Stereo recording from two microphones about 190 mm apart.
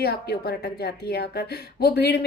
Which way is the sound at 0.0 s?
55° left (ahead or behind).